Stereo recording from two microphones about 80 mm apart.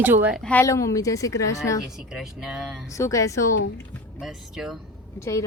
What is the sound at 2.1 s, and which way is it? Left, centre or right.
Speech, centre.